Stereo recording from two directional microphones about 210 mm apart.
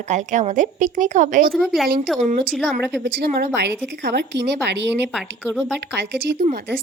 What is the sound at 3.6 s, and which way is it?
Speech, 55° right (ahead or behind).